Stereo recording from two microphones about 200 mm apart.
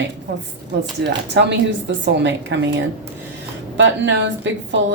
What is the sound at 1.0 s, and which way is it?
Speech, 60° right (ahead or behind).